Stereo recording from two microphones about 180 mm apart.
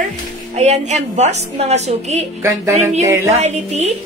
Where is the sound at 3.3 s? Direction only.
35° right (ahead or behind).